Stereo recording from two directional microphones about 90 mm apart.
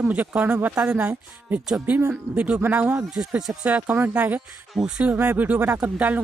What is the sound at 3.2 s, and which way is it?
Speech, 5° right (ahead or behind).